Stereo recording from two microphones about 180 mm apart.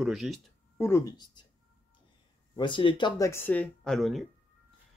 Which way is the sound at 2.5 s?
25° left (ahead or behind).